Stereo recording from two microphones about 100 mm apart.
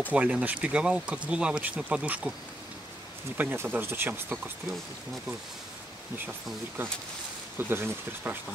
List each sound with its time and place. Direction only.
0.1 s speech: 15° right (ahead or behind)
3.3 s speech: 20° right (ahead or behind)
7.5 s speech: 20° right (ahead or behind)